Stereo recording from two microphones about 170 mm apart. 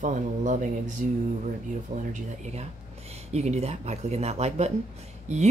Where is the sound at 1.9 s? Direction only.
45° right (ahead or behind).